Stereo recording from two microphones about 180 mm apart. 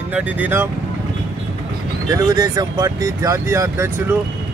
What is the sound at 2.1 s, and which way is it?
Speech, 20° right (ahead or behind).